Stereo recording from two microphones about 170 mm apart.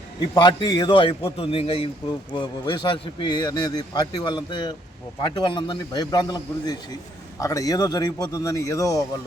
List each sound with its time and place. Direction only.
0.2 s a man's voice: 25° left (ahead or behind)